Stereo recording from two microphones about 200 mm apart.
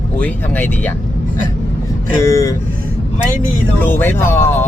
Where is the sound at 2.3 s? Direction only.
15° left (ahead or behind).